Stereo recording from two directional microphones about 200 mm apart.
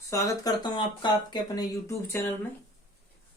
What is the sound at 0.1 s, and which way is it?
Speech, 15° left (ahead or behind).